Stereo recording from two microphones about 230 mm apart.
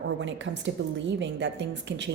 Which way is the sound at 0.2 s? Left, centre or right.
Right.